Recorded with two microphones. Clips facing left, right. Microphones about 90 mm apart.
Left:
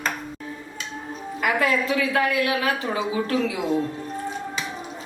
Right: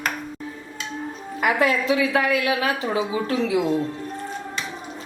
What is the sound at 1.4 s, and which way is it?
A woman's voice, 20° right (ahead or behind).